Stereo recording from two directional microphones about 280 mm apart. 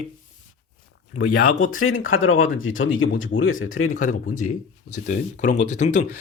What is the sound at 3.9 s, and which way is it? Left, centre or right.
Speech, left.